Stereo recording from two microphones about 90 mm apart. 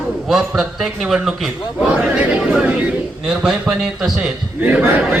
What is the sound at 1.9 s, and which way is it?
A man's voice, 15° right (ahead or behind).